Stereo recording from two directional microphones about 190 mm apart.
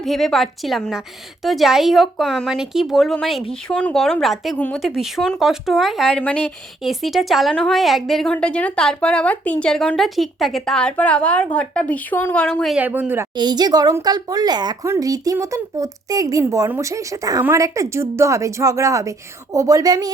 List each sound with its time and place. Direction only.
0.0 s speech: centre (ahead or behind)
13.3 s a woman's voice: 20° right (ahead or behind)